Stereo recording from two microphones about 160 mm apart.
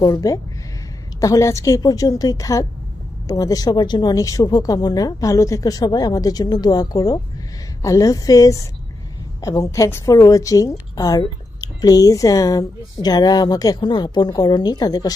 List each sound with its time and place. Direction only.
0.0 s a woman's voice: 20° left (ahead or behind)